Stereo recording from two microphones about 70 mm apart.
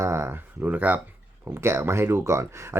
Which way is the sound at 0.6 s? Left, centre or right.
Right.